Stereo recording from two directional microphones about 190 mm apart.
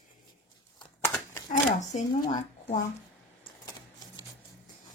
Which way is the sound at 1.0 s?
15° left (ahead or behind).